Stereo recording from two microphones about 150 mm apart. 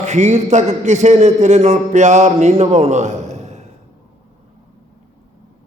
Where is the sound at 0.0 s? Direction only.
50° right (ahead or behind).